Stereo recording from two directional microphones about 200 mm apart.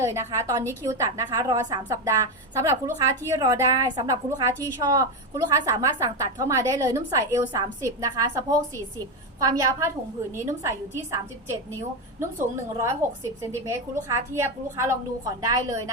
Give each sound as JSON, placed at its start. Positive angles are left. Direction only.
{"t": 0.0, "sound": "a woman's voice", "side_deg": -15}
{"t": 12.7, "sound": "a woman's voice", "side_deg": -15}